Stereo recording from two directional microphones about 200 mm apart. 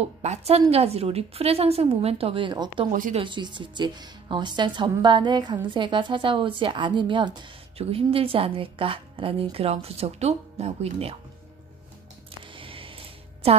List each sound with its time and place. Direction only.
0.0 s a woman's voice: 35° right (ahead or behind)
2.9 s a woman's voice: 40° right (ahead or behind)
3.2 s a woman's voice: 25° right (ahead or behind)
12.5 s a sound: 25° right (ahead or behind)
13.4 s a woman's voice: 30° right (ahead or behind)